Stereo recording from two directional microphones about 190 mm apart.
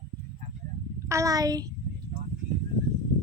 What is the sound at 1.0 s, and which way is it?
Speech, 15° right (ahead or behind).